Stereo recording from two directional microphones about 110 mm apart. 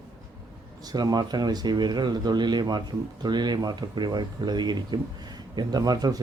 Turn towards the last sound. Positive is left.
turn(degrees=-35)  # may be behind; listen again after turning